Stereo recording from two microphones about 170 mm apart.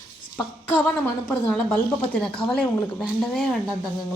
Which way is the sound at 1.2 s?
Centre (ahead or behind).